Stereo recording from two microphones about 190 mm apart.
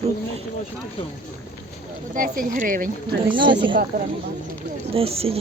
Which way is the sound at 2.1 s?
45° right (ahead or behind).